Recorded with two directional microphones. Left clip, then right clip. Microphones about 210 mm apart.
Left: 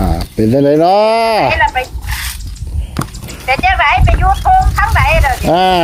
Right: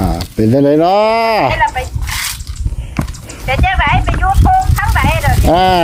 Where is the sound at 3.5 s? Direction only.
30° left (ahead or behind).